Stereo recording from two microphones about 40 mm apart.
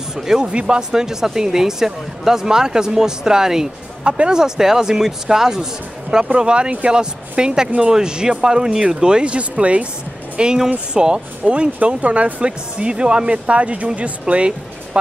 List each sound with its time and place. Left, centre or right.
0.4 s speech: right